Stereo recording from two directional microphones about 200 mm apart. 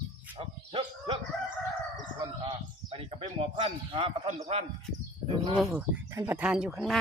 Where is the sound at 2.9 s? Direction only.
30° right (ahead or behind).